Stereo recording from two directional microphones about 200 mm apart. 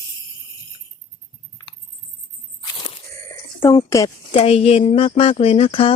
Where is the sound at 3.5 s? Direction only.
15° left (ahead or behind).